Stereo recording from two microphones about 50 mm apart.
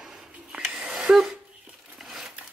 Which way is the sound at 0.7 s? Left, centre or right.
Centre.